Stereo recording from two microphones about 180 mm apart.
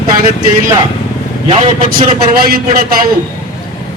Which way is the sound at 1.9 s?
50° right (ahead or behind).